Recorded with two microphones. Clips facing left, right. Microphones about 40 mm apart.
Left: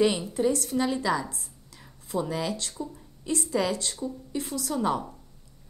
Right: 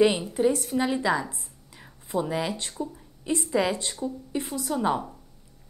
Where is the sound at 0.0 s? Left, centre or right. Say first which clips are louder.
Right 3 dB; right.